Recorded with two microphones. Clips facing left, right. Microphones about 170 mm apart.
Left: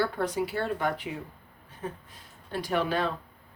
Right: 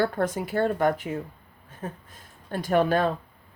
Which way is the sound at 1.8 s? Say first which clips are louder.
Right 1 dB; 45° right (ahead or behind).